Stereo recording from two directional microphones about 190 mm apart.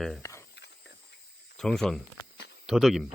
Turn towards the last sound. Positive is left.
turn(degrees=0)  # may be behind; listen again after turning